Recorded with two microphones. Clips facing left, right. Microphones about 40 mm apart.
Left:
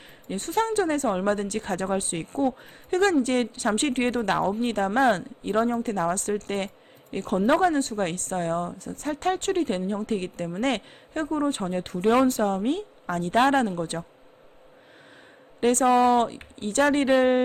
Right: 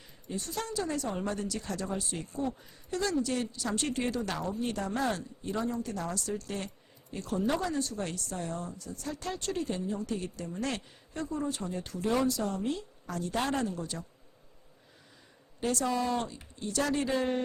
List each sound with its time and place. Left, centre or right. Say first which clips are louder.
0.3 s a woman's voice: left 11 dB; left
15.6 s a woman's voice: left 11 dB; left